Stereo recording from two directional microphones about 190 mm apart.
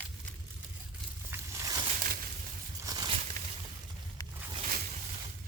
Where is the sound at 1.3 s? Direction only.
15° right (ahead or behind).